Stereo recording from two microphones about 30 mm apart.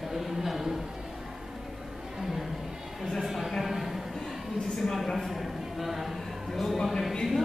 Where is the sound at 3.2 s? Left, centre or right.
Centre.